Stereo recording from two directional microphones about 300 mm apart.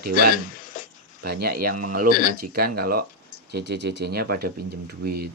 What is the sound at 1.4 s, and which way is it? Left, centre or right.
Speech, right.